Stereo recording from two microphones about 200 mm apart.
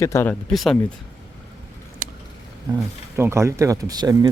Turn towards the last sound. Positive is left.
turn(degrees=-20)  # may be behind; listen again after turning